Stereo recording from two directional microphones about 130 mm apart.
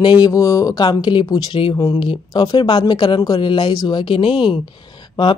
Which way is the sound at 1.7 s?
25° left (ahead or behind).